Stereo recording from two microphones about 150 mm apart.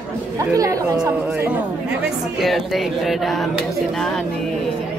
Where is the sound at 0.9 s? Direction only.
10° right (ahead or behind).